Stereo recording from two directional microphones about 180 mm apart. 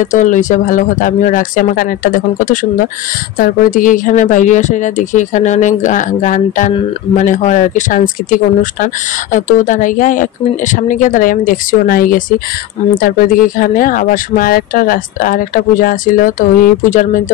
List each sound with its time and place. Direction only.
0.0 s speech: 45° left (ahead or behind)